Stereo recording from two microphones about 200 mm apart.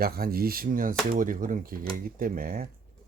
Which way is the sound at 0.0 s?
50° right (ahead or behind).